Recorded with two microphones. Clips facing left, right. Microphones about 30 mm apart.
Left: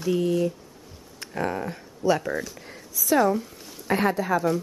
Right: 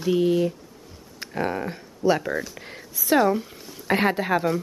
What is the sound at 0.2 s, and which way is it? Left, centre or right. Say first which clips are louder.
Speech: right 3 dB; right.